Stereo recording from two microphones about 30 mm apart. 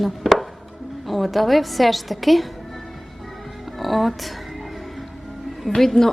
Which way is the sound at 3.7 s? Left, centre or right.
Centre.